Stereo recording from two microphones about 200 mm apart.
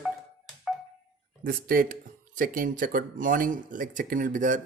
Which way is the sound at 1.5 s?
45° right (ahead or behind).